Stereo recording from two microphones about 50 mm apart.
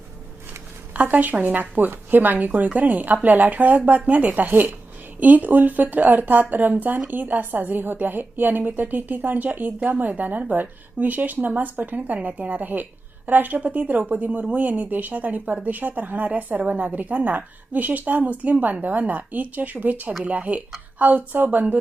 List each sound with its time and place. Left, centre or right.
0.9 s a woman's voice: right